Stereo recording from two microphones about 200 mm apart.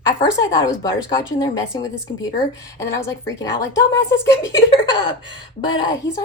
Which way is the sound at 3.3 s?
15° left (ahead or behind).